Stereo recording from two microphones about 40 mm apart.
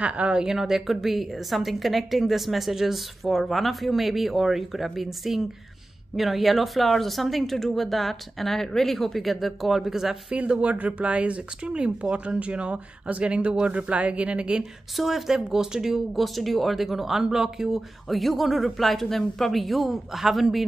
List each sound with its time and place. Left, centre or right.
0.0 s speech: right
0.5 s speech: centre
10.6 s speech: right
15.0 s speech: centre
18.0 s speech: centre